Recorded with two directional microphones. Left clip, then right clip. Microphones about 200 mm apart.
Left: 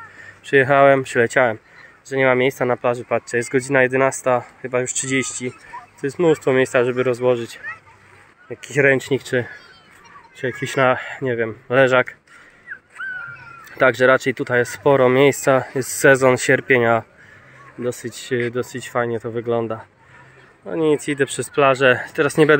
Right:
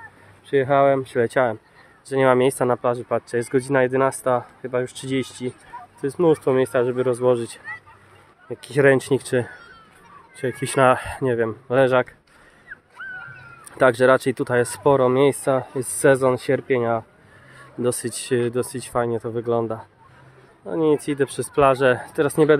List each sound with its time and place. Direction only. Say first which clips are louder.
0.5 s speech: left 4 dB; 10° left (ahead or behind); by 7.6 s 10° right (ahead or behind)
8.7 s speech: left 1 dB; 10° right (ahead or behind)
13.0 s a sound: left 6 dB; 45° left (ahead or behind)
13.7 s speech: left 1 dB; 5° right (ahead or behind)
17.9 s speech: even; 15° right (ahead or behind); by 22.6 s 5° left (ahead or behind)